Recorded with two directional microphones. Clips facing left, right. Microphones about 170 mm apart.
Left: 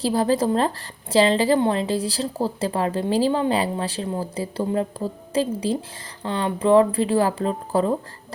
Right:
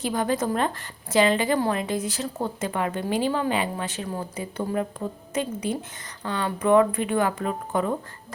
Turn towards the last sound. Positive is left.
turn(degrees=30)  # may be behind; listen again after turning